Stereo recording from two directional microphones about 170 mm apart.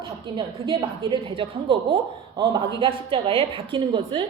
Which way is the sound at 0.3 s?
30° right (ahead or behind).